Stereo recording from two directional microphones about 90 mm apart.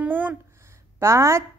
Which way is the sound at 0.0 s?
15° right (ahead or behind).